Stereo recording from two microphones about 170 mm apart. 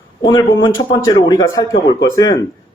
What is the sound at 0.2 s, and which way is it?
A man's voice, 25° left (ahead or behind).